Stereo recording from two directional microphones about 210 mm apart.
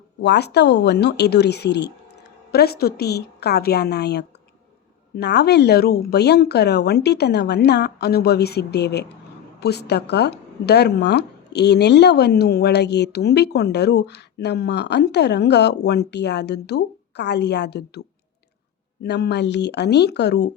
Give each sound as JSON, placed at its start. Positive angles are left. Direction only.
{"t": 0.2, "sound": "speech", "side_deg": 55}
{"t": 19.0, "sound": "speech", "side_deg": 50}